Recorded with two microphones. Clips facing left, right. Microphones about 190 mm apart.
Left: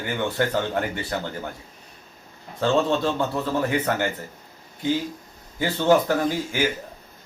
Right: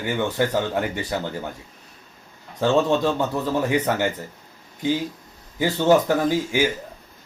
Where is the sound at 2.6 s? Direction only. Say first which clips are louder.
Right 2 dB; 20° right (ahead or behind).